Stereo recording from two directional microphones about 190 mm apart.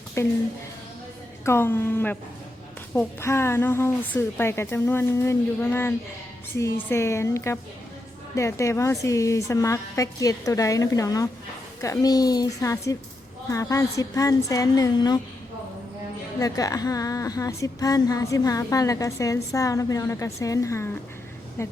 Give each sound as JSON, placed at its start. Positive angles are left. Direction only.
{"t": 0.2, "sound": "a woman's voice", "side_deg": 15}
{"t": 1.5, "sound": "a woman's voice", "side_deg": 10}
{"t": 16.4, "sound": "a woman's voice", "side_deg": 20}